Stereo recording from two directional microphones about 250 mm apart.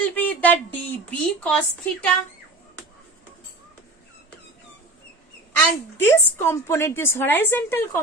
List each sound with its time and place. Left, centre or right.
0.0 s speech: centre
5.5 s a woman's voice: centre